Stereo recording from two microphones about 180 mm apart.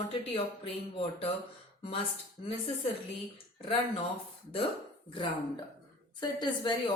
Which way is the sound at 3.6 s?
30° left (ahead or behind).